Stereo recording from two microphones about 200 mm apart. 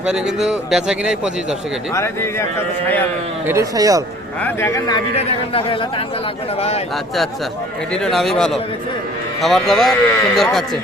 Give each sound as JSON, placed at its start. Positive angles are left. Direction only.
{"t": 0.0, "sound": "a man's voice", "side_deg": -5}
{"t": 1.9, "sound": "a man's voice", "side_deg": 15}
{"t": 3.4, "sound": "speech", "side_deg": -15}
{"t": 4.4, "sound": "a man's voice", "side_deg": 15}
{"t": 7.9, "sound": "a man's voice", "side_deg": 0}